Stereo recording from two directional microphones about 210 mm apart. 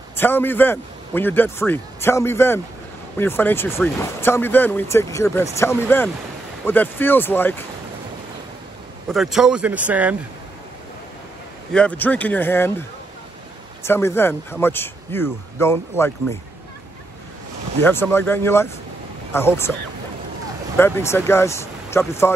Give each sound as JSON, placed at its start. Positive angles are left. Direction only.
{"t": 0.1, "sound": "speech", "side_deg": 10}
{"t": 9.1, "sound": "speech", "side_deg": 0}
{"t": 11.7, "sound": "speech", "side_deg": 5}
{"t": 13.8, "sound": "speech", "side_deg": 10}
{"t": 17.8, "sound": "speech", "side_deg": 10}
{"t": 20.7, "sound": "speech", "side_deg": 10}